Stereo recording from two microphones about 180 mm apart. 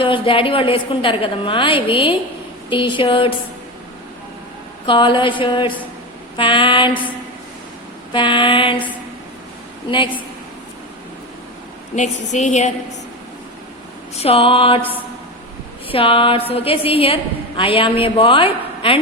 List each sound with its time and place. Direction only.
0.0 s a woman's voice: 30° left (ahead or behind)
4.9 s a woman's voice: 25° left (ahead or behind)
6.3 s a sound: 30° left (ahead or behind)
8.1 s a woman's voice: 25° left (ahead or behind)
9.9 s a woman's voice: 25° left (ahead or behind)
11.9 s a woman's voice: 40° left (ahead or behind)
14.2 s a woman's voice: 30° left (ahead or behind)